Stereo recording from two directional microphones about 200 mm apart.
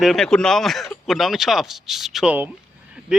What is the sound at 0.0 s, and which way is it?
Speech, centre (ahead or behind).